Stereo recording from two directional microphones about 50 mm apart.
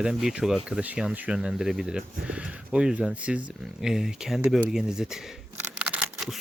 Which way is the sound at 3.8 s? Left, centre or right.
Centre.